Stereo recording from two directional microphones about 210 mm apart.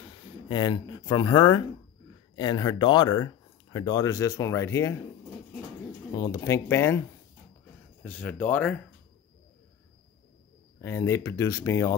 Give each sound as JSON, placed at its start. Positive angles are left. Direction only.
{"t": 0.5, "sound": "speech", "side_deg": 20}
{"t": 6.1, "sound": "speech", "side_deg": 15}
{"t": 10.8, "sound": "speech", "side_deg": 15}